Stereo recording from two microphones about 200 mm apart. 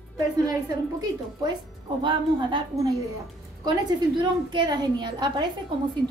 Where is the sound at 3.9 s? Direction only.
25° right (ahead or behind).